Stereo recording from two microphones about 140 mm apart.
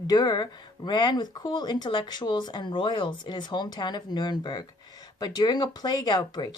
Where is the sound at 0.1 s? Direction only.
30° left (ahead or behind).